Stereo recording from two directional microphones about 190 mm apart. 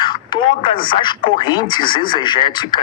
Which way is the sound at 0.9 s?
25° left (ahead or behind).